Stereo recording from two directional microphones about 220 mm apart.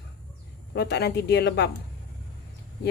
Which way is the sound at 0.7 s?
50° left (ahead or behind).